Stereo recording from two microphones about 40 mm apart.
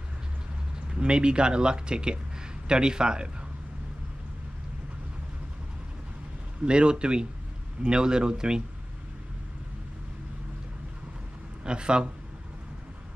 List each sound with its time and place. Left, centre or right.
0.9 s speech: right
6.6 s speech: right
11.6 s speech: right